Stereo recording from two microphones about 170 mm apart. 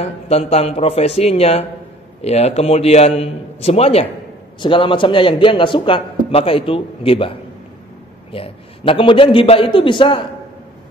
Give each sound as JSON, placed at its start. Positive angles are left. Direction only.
{"t": 0.0, "sound": "a man's voice", "side_deg": 35}